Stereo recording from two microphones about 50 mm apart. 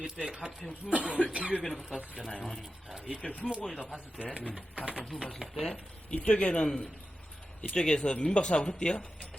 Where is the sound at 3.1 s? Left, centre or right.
Centre.